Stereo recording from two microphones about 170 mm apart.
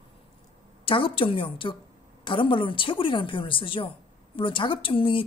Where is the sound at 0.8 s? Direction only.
30° left (ahead or behind).